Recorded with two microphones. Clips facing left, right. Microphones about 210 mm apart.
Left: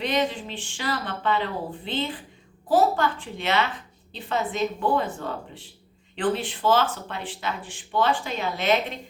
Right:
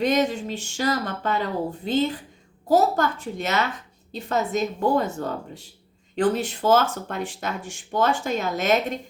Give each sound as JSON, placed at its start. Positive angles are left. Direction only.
{"t": 0.0, "sound": "speech", "side_deg": -45}